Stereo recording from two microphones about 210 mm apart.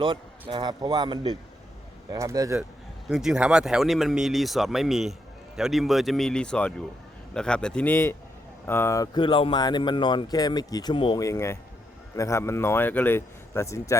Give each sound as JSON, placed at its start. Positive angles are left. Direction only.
{"t": 0.0, "sound": "a man's voice", "side_deg": -25}
{"t": 3.1, "sound": "speech", "side_deg": -5}